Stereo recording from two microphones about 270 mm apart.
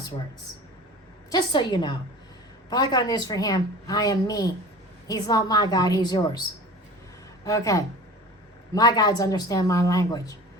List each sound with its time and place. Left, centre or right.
1.3 s a woman's voice: centre
7.4 s a woman's voice: centre